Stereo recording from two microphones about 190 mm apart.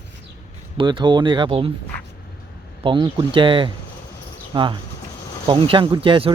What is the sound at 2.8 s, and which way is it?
Speech, 25° right (ahead or behind).